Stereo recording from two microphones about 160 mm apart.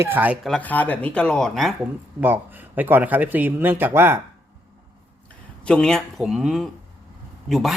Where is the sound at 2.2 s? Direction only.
10° right (ahead or behind).